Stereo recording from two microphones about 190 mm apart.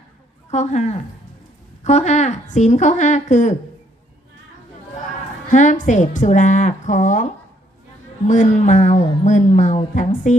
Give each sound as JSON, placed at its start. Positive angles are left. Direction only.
{"t": 0.5, "sound": "a woman's voice", "side_deg": 35}
{"t": 5.5, "sound": "a woman's voice", "side_deg": 40}
{"t": 8.3, "sound": "a woman's voice", "side_deg": 40}